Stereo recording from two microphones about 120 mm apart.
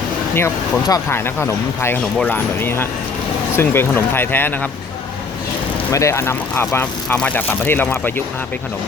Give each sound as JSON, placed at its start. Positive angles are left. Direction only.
{"t": 0.3, "sound": "speech", "side_deg": 25}
{"t": 5.9, "sound": "speech", "side_deg": 25}